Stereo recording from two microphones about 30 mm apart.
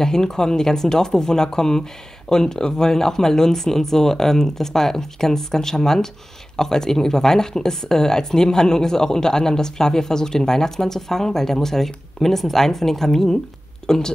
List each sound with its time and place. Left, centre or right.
0.0 s a woman's voice: left